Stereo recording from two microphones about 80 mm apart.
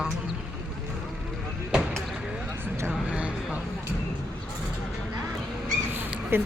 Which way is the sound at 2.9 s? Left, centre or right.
Centre.